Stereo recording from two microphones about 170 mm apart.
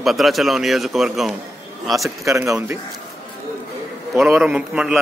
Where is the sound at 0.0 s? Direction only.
Centre (ahead or behind).